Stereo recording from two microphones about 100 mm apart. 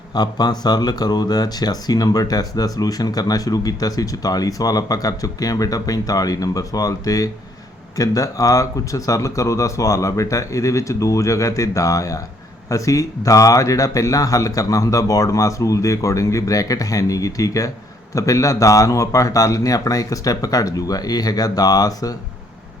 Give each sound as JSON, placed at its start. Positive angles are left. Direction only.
{"t": 0.1, "sound": "speech", "side_deg": 45}